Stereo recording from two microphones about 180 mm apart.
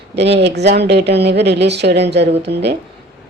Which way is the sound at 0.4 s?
70° right (ahead or behind).